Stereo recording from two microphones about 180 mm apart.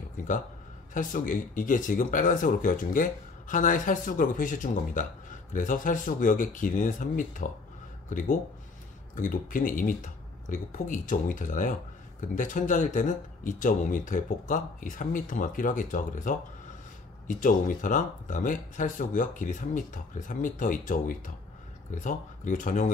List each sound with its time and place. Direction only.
0.9 s speech: 50° left (ahead or behind)